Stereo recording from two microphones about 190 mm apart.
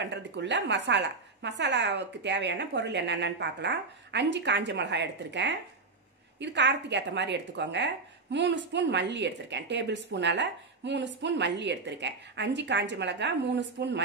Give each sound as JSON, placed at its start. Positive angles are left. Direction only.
{"t": 0.0, "sound": "speech", "side_deg": -65}